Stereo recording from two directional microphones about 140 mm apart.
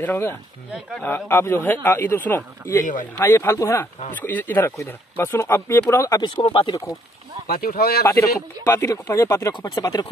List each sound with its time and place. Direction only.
0.0 s speech: 15° left (ahead or behind); by 6.7 s 35° left (ahead or behind)
7.4 s speech: 90° left
8.6 s speech: 20° left (ahead or behind)